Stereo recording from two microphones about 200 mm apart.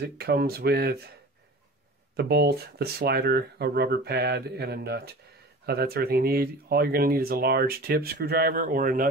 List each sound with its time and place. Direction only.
0.2 s speech: 50° right (ahead or behind)
2.1 s speech: 55° right (ahead or behind)